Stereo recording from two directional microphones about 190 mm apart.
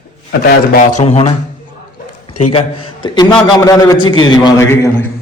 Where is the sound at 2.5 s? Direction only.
25° left (ahead or behind).